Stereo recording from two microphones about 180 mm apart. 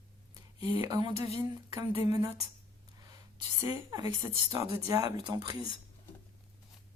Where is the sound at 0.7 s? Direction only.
25° right (ahead or behind).